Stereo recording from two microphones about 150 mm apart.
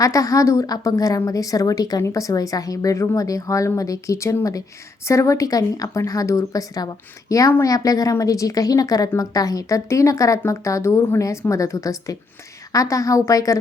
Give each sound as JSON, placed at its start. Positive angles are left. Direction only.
{"t": 0.0, "sound": "speech", "side_deg": 20}